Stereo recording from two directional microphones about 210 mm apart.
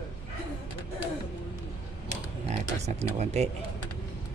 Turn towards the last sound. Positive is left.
turn(degrees=-30)  # may be behind; listen again after turning